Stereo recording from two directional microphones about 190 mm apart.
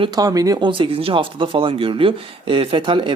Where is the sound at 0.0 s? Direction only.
20° right (ahead or behind).